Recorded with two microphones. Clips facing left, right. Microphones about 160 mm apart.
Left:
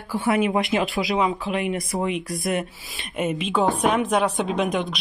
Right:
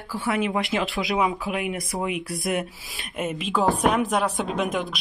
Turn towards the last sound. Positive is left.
turn(degrees=0)  # may be behind; listen again after turning